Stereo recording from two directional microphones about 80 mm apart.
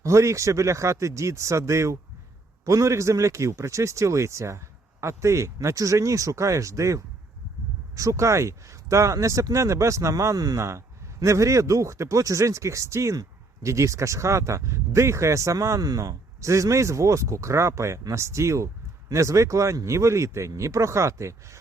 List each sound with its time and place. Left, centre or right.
0.0 s speech: right